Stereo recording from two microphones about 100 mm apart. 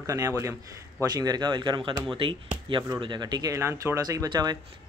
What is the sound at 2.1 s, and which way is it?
Speech, 60° right (ahead or behind).